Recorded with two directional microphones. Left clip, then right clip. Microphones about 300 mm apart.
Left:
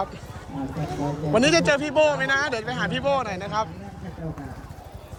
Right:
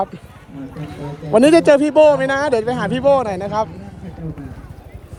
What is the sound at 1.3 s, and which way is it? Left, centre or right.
Speech, centre.